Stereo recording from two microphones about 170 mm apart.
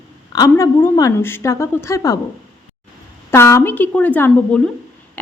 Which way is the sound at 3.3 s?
15° left (ahead or behind).